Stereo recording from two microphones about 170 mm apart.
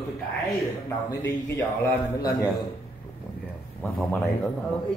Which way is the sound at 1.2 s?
15° left (ahead or behind).